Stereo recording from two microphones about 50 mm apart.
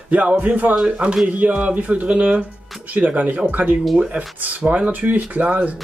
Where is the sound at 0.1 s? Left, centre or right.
Right.